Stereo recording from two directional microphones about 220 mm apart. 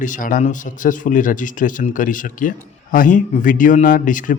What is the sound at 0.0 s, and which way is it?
Speech, 35° left (ahead or behind).